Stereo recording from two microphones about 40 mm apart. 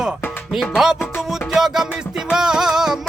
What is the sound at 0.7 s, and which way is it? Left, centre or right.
Music, centre.